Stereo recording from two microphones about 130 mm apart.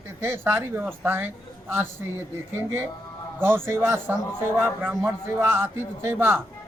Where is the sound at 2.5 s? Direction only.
20° right (ahead or behind).